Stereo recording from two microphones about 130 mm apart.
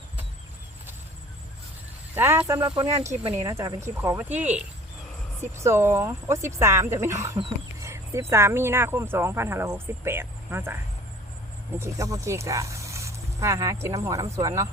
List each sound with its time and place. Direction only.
2.1 s speech: 15° right (ahead or behind)
11.8 s speech: 25° right (ahead or behind)